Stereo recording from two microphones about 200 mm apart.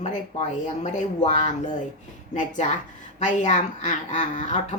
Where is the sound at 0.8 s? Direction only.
35° left (ahead or behind).